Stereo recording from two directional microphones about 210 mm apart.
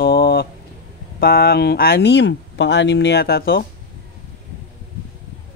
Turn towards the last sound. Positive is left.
turn(degrees=45)  # may be behind; listen again after turning